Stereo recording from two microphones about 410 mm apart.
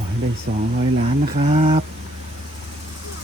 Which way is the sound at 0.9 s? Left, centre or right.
Centre.